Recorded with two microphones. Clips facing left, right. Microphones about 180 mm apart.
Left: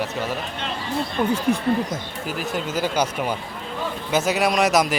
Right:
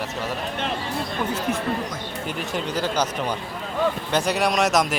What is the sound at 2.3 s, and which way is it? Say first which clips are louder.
Speech: left 2 dB; centre (ahead or behind).